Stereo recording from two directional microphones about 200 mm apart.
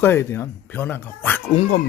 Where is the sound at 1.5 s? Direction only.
35° left (ahead or behind).